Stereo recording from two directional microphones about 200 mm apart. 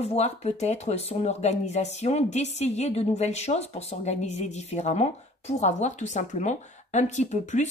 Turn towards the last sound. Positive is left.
turn(degrees=35)  # may be behind; listen again after turning